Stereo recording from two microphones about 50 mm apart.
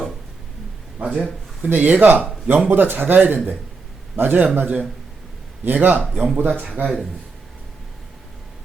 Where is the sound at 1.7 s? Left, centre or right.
Right.